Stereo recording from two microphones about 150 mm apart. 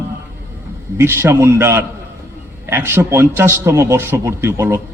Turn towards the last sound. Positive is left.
turn(degrees=-15)  # may be behind; listen again after turning